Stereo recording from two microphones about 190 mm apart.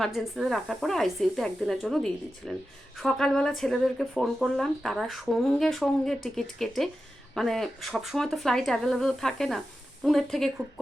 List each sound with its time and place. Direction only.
0.0 s speech: centre (ahead or behind)